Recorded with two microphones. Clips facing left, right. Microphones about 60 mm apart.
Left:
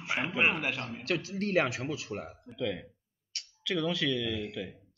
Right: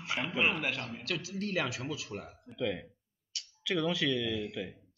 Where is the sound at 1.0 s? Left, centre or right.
Left.